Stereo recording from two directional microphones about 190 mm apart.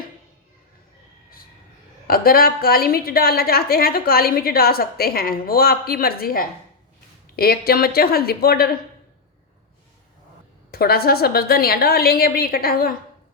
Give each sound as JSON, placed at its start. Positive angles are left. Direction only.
{"t": 2.0, "sound": "a woman's voice", "side_deg": 50}
{"t": 10.7, "sound": "a woman's voice", "side_deg": 55}